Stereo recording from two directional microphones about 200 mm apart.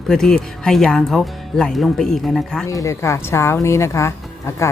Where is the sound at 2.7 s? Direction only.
15° left (ahead or behind).